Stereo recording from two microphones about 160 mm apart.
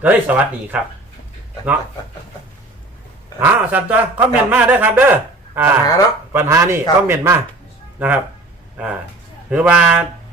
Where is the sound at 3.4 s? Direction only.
10° right (ahead or behind).